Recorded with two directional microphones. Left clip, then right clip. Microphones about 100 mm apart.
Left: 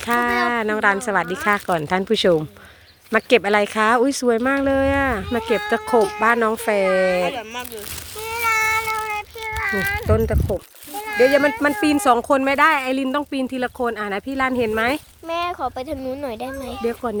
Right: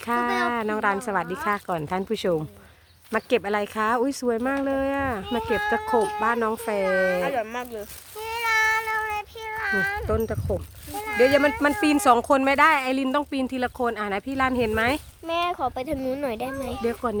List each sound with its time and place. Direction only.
0.0 s music: 15° left (ahead or behind)
0.3 s speech: 20° left (ahead or behind)
8.2 s a sound: 40° left (ahead or behind)
10.2 s speech: 40° left (ahead or behind)
11.0 s speech: 50° left (ahead or behind)
11.8 s speech: 35° left (ahead or behind)
14.8 s speech: 60° left (ahead or behind)
15.3 s speech: 5° right (ahead or behind)
16.0 s speech: 40° right (ahead or behind)
16.8 s speech: 30° left (ahead or behind)